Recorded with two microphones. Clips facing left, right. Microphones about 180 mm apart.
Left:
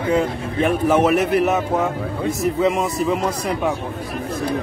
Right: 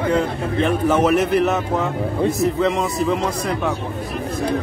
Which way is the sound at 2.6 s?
5° left (ahead or behind).